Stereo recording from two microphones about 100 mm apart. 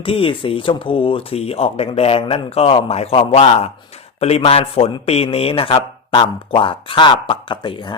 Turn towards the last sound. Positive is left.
turn(degrees=50)  # may be behind; listen again after turning